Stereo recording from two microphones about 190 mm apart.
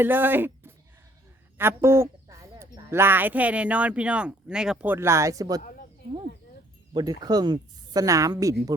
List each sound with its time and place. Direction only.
0.0 s speech: 10° right (ahead or behind)
6.9 s speech: 20° right (ahead or behind)